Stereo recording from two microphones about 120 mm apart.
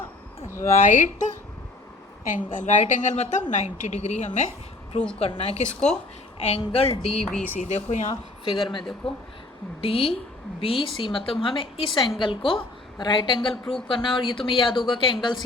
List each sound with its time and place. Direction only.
0.4 s speech: 25° left (ahead or behind)
0.7 s a woman's voice: 90° left; by 4.3 s 70° left (ahead or behind)
5.2 s a woman's voice: 55° left (ahead or behind)
7.6 s speech: 80° left
8.4 s speech: 45° left (ahead or behind)